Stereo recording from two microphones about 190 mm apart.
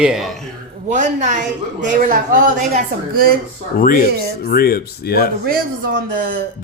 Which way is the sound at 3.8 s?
45° left (ahead or behind).